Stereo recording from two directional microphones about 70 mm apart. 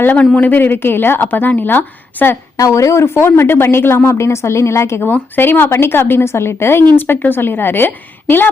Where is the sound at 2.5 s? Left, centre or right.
Left.